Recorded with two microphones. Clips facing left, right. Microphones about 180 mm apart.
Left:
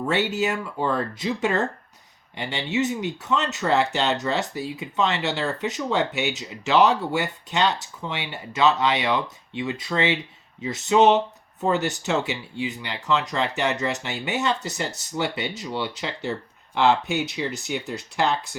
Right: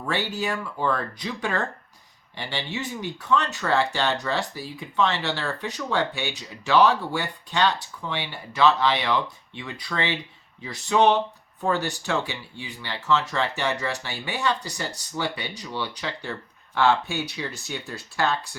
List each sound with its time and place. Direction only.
0.0 s speech: 20° left (ahead or behind)